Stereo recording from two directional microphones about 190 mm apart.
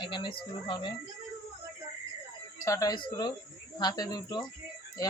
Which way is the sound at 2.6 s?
15° left (ahead or behind).